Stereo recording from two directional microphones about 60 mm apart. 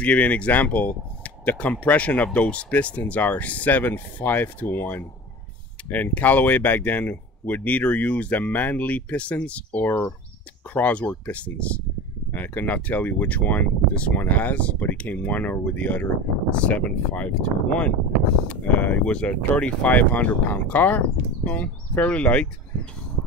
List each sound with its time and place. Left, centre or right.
0.0 s speech: left
9.8 s speech: left